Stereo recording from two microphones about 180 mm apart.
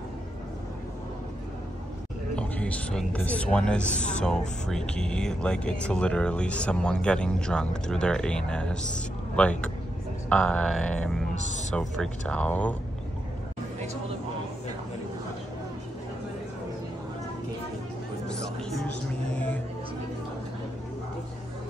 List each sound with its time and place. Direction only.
2.3 s speech: 10° left (ahead or behind)
11.3 s speech: 40° left (ahead or behind)
11.7 s speech: 5° left (ahead or behind)
18.6 s music: centre (ahead or behind)
19.3 s a sound: 10° left (ahead or behind)